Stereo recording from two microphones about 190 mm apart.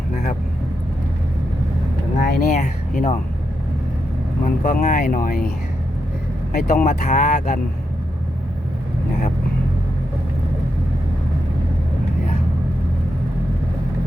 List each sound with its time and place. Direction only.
2.3 s speech: 45° left (ahead or behind)
4.4 s speech: 45° left (ahead or behind)
6.5 s speech: 45° left (ahead or behind)